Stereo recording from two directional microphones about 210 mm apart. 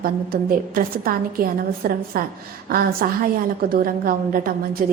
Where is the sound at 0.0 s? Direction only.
45° right (ahead or behind).